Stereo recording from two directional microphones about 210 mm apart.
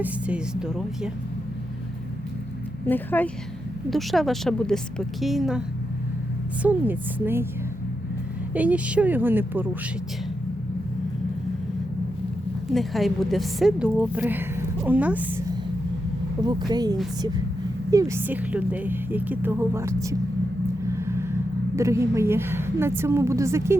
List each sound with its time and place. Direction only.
0.0 s a woman's voice: 5° right (ahead or behind)
2.8 s a woman's voice: 10° left (ahead or behind); by 7.4 s 10° right (ahead or behind)
8.5 s a woman's voice: 5° right (ahead or behind)
12.7 s a woman's voice: centre (ahead or behind)
20.9 s vehicle: 15° right (ahead or behind)
21.8 s a woman's voice: 15° right (ahead or behind)